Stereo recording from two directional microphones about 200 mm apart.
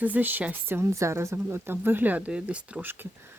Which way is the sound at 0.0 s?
10° right (ahead or behind).